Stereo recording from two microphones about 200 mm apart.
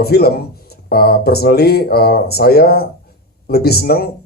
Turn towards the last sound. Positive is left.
turn(degrees=50)  # may be behind; listen again after turning